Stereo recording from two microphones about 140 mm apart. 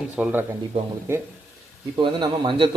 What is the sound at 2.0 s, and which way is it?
Speech, 35° right (ahead or behind).